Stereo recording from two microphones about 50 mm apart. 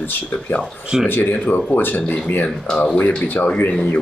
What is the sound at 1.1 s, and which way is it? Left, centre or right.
Speech, left.